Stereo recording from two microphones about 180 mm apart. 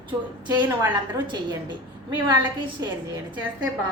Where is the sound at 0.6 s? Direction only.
25° right (ahead or behind).